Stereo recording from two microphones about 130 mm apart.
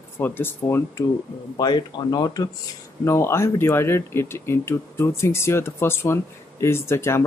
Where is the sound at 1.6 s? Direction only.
35° left (ahead or behind).